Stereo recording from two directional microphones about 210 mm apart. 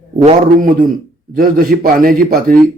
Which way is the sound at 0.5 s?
40° right (ahead or behind).